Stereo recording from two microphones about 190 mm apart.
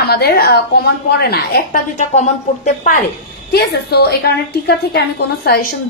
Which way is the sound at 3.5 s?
55° left (ahead or behind).